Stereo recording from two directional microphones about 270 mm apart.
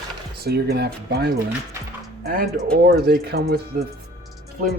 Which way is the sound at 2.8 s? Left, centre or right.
Right.